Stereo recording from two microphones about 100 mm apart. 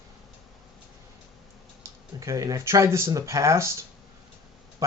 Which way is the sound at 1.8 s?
30° right (ahead or behind).